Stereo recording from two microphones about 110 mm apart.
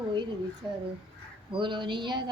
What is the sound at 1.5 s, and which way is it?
Speech, 50° right (ahead or behind).